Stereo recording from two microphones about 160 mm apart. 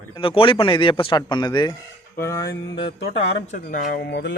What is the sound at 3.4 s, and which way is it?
Speech, 55° left (ahead or behind).